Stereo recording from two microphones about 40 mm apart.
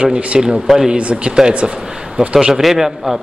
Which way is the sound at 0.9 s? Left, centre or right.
Right.